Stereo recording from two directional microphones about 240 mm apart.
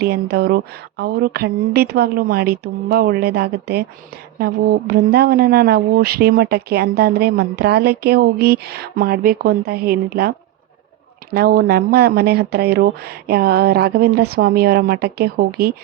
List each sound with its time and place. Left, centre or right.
0.0 s speech: right
11.3 s speech: right